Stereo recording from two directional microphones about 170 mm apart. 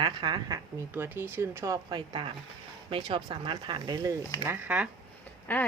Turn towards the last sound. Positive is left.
turn(degrees=10)  # may be behind; listen again after turning